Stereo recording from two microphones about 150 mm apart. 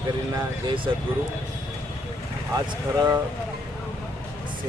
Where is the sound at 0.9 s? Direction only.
30° right (ahead or behind).